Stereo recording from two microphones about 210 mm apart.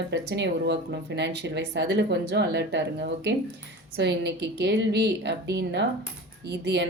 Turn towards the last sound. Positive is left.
turn(degrees=-55)  # may be behind; listen again after turning